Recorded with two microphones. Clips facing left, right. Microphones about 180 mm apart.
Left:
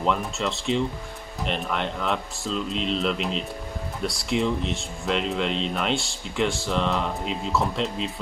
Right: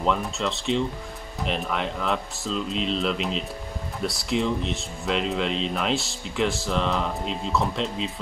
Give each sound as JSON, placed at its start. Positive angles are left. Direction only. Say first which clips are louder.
{"t": 0.0, "sound": "speech", "louder": "even", "side_deg": 0}